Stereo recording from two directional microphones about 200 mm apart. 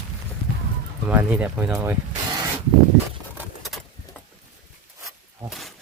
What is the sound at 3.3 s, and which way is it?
Patter, centre (ahead or behind).